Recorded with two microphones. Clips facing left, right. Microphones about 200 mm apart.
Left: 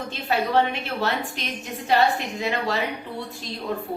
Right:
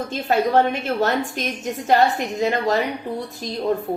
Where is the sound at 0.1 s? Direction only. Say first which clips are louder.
Right 4 dB; 45° right (ahead or behind).